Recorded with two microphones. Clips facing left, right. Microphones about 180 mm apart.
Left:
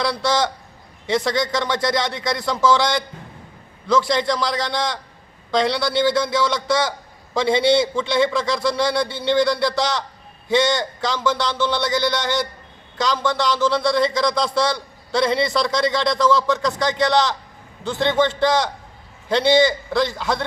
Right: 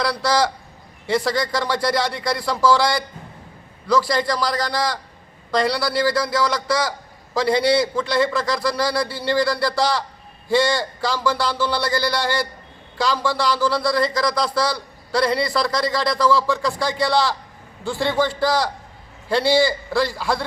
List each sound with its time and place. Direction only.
0.0 s a man's voice: 5° right (ahead or behind)
7.7 s a man's voice: 5° right (ahead or behind)
14.5 s a man's voice: 25° left (ahead or behind)
15.1 s a man's voice: centre (ahead or behind)